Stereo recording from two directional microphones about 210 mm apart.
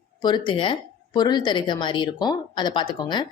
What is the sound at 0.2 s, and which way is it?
A woman's voice, 20° left (ahead or behind).